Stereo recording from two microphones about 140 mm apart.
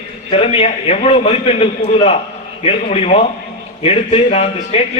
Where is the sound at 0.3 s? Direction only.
45° left (ahead or behind).